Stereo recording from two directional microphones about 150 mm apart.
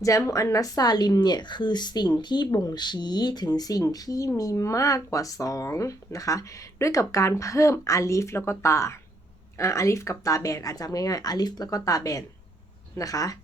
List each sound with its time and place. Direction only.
0.0 s a woman's voice: 20° left (ahead or behind)